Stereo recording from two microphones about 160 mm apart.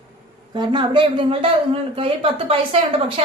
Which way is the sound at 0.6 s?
30° right (ahead or behind).